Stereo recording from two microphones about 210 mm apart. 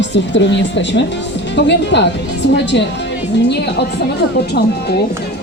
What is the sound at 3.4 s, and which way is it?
A woman's voice, 55° left (ahead or behind).